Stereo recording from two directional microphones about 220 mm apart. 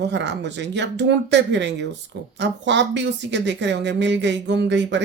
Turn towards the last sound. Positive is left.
turn(degrees=-55)  # may be behind; listen again after turning